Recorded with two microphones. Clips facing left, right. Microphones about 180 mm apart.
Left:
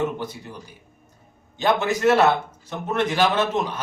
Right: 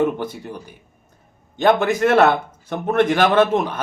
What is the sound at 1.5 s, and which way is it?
Speech, 55° right (ahead or behind).